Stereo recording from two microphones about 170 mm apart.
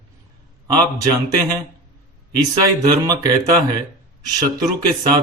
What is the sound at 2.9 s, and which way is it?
Speech, 20° right (ahead or behind).